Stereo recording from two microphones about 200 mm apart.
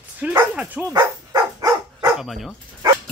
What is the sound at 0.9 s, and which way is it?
Dog, 20° right (ahead or behind).